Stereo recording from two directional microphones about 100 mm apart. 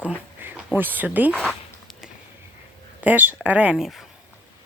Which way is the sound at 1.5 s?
Centre (ahead or behind).